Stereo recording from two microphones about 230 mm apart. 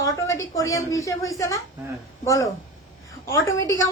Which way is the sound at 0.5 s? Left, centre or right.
Centre.